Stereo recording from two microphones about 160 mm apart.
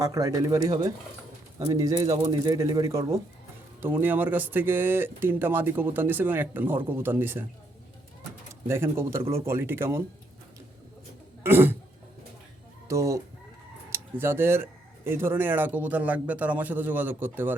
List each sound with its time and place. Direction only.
0.0 s speech: 20° right (ahead or behind)
8.6 s speech: 15° right (ahead or behind)
11.4 s a sound: 15° right (ahead or behind)
12.9 s speech: 20° right (ahead or behind)